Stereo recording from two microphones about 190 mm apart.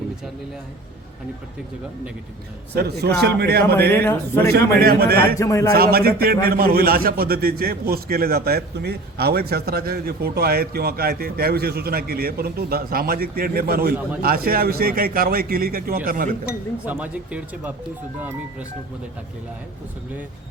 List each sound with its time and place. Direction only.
2.7 s a man's voice: 60° right (ahead or behind)
3.9 s speech: 10° left (ahead or behind)
4.7 s a man's voice: 55° right (ahead or behind)
5.4 s speech: 15° left (ahead or behind)
5.7 s a man's voice: 55° right (ahead or behind)
16.8 s speech: 5° right (ahead or behind)